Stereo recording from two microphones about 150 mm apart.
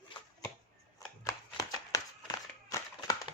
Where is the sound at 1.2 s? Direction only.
25° left (ahead or behind).